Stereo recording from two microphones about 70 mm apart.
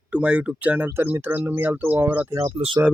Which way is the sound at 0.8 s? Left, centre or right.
Right.